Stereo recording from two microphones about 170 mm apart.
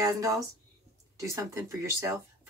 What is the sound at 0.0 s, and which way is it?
Speech, 20° right (ahead or behind).